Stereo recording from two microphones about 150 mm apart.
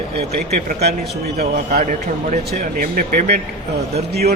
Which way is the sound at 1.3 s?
90° right.